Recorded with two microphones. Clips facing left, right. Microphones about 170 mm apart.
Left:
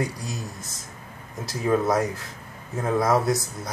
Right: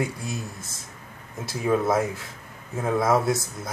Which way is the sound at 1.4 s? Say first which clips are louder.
Even; 5° right (ahead or behind).